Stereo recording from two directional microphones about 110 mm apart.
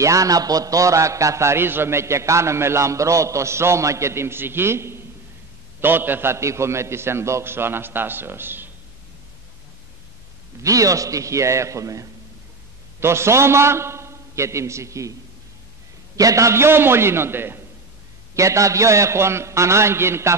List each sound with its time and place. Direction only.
0.0 s a man's voice: 30° right (ahead or behind)
10.6 s a man's voice: 30° right (ahead or behind)
16.2 s a man's voice: 30° right (ahead or behind)